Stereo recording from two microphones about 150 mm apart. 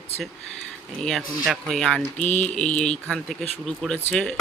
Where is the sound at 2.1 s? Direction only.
55° left (ahead or behind).